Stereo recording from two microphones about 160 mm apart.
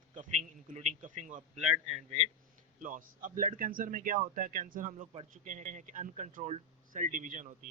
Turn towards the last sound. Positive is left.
turn(degrees=-55)  # may be behind; listen again after turning